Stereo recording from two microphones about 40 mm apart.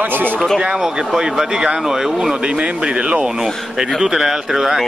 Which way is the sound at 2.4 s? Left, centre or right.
Right.